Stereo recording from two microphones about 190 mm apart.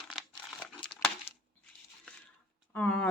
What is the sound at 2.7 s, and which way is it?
Speech, 5° left (ahead or behind).